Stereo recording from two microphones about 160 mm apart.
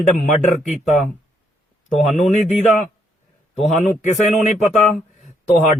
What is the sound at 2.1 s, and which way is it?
Speech, 50° left (ahead or behind).